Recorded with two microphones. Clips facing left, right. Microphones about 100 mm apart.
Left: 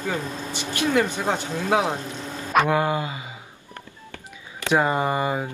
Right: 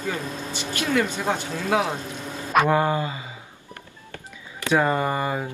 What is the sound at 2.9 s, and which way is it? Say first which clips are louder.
Speech: right 1 dB; 15° left (ahead or behind).